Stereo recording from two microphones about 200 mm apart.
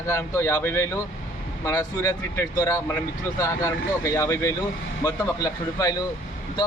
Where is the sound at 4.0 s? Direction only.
15° left (ahead or behind).